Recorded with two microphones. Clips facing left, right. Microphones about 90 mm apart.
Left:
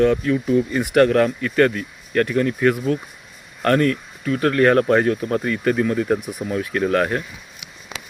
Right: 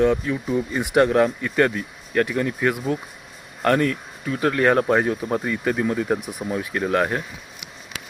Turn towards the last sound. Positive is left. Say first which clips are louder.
# left 2 dB
turn(degrees=-15)  # may be behind; listen again after turning